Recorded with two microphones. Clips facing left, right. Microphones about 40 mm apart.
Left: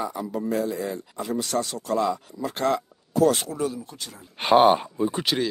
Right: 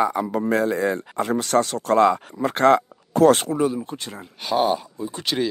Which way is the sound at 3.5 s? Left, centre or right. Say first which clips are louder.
Right 6 dB; right.